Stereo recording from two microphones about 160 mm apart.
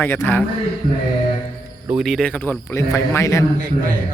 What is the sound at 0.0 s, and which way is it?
Speech, 15° left (ahead or behind).